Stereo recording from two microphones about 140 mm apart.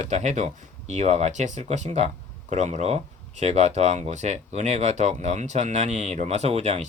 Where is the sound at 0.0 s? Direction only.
55° right (ahead or behind).